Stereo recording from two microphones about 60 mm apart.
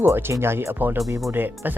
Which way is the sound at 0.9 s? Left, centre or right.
Right.